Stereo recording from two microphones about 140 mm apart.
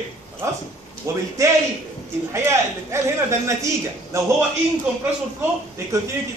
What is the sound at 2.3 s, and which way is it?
A man's voice, 20° right (ahead or behind).